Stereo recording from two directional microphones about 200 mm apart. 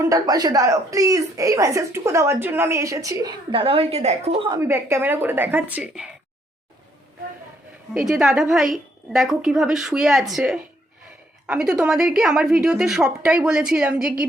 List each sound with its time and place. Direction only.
0.0 s a woman's voice: 15° right (ahead or behind)
4.5 s a woman's voice: 15° right (ahead or behind)
7.9 s a woman's voice: centre (ahead or behind)